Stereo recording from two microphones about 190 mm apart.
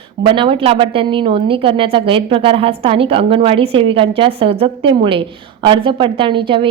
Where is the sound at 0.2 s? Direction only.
25° right (ahead or behind).